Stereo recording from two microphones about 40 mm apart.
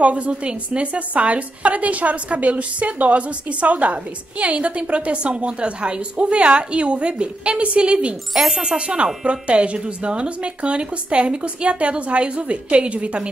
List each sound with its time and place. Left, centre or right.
0.0 s a woman's voice: right
8.3 s speech: centre
8.6 s a woman's voice: right